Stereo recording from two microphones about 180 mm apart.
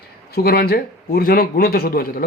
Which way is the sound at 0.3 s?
60° left (ahead or behind).